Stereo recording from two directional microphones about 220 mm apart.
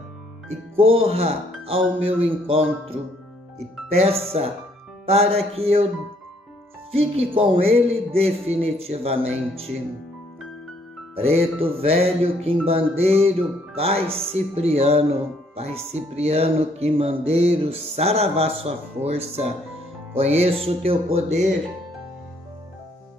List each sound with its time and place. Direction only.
0.5 s speech: 25° right (ahead or behind)
7.3 s speech: 25° right (ahead or behind)
11.1 s speech: 25° right (ahead or behind)